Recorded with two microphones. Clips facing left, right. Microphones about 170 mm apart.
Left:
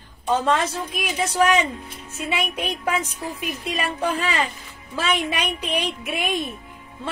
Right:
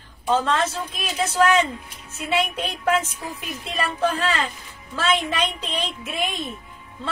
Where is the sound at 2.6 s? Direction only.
10° left (ahead or behind).